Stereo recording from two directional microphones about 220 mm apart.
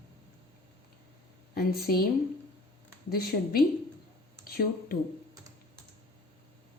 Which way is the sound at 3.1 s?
45° left (ahead or behind).